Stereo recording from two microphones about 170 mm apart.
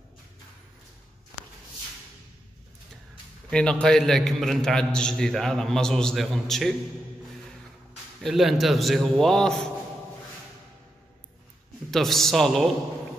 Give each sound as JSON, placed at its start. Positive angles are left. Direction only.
{"t": 3.4, "sound": "a man's voice", "side_deg": 5}
{"t": 8.2, "sound": "a man's voice", "side_deg": 0}
{"t": 11.9, "sound": "a man's voice", "side_deg": 0}